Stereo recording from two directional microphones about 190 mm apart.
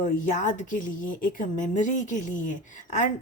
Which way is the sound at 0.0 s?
40° left (ahead or behind).